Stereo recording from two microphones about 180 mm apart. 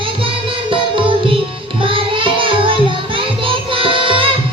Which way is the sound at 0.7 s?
30° right (ahead or behind).